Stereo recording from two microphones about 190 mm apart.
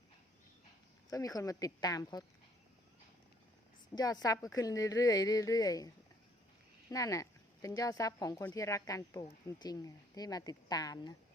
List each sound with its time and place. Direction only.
1.1 s a woman's voice: 20° left (ahead or behind)
3.9 s a woman's voice: 20° left (ahead or behind)
6.9 s a woman's voice: 15° left (ahead or behind)